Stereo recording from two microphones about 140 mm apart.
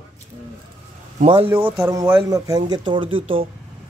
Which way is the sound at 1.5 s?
15° right (ahead or behind).